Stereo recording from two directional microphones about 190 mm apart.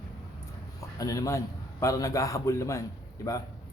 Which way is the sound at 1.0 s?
20° left (ahead or behind).